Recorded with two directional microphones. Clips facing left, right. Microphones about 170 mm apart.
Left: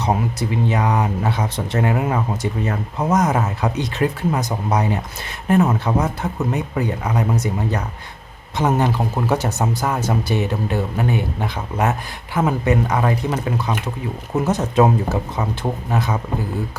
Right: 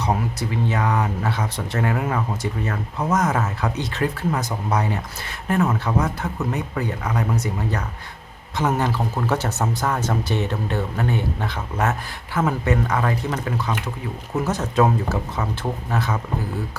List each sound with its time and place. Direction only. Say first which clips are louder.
0.0 s speech: left 3 dB; 20° left (ahead or behind)